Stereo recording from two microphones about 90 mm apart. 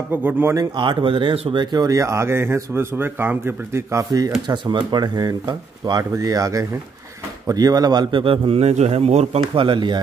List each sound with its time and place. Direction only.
0.1 s a man's voice: 20° right (ahead or behind)
0.7 s a man's voice: 65° right (ahead or behind)
1.9 s a man's voice: 35° right (ahead or behind)
4.5 s a man's voice: 55° right (ahead or behind)